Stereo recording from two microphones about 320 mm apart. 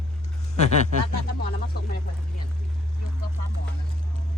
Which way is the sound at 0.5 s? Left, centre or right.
Left.